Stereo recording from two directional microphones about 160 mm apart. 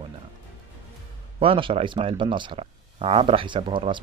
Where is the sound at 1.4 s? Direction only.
35° right (ahead or behind).